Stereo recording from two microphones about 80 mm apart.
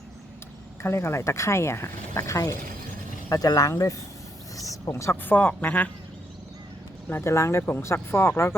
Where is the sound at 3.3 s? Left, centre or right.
Left.